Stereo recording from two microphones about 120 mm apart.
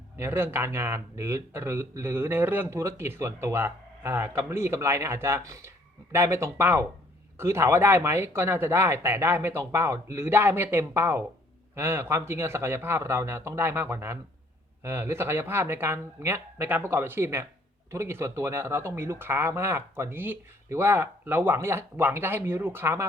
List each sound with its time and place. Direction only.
0.2 s speech: 20° right (ahead or behind)